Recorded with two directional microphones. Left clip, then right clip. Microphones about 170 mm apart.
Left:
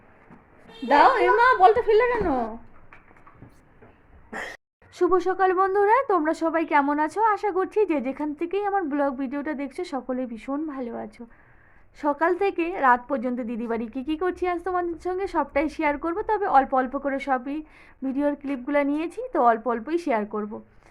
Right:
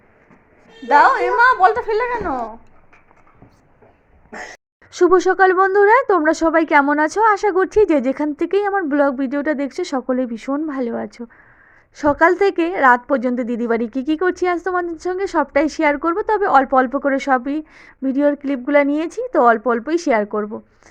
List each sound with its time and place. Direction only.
0.9 s speech: 30° left (ahead or behind)
4.9 s a woman's voice: 30° right (ahead or behind)